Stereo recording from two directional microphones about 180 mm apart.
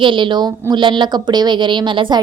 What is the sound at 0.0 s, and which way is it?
A woman's voice, 25° right (ahead or behind).